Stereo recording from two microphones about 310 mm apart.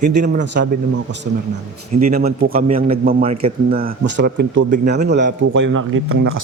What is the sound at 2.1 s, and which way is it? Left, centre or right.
A man's voice, right.